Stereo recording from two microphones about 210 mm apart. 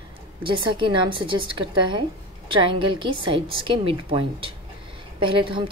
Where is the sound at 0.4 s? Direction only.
25° right (ahead or behind).